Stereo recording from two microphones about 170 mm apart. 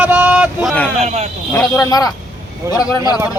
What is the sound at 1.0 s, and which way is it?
Speech, 40° right (ahead or behind).